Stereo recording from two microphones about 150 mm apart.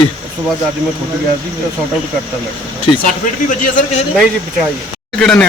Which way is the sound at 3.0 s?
65° left (ahead or behind).